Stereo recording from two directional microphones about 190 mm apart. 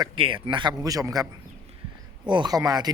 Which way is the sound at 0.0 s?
25° right (ahead or behind).